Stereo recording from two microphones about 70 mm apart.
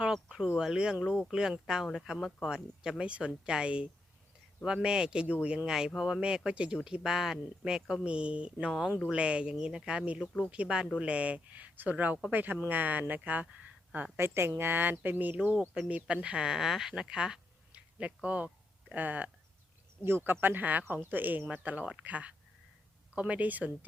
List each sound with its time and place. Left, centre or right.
0.0 s speech: centre
14.2 s speech: right
15.7 s speech: centre
20.1 s speech: right